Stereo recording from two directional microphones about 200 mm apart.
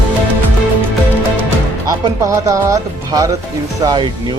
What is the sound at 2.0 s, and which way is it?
Speech, 15° right (ahead or behind).